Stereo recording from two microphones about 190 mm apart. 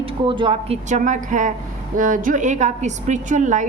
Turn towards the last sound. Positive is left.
turn(degrees=-40)  # may be behind; listen again after turning